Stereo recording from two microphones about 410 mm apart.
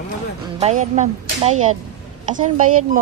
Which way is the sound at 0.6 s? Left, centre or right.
Centre.